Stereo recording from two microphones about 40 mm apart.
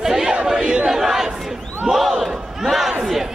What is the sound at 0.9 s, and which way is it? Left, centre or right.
Speech, centre.